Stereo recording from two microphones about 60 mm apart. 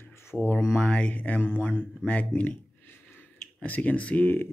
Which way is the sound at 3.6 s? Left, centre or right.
Left.